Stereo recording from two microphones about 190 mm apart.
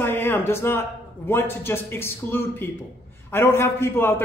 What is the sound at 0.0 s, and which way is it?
A man's voice, 10° left (ahead or behind).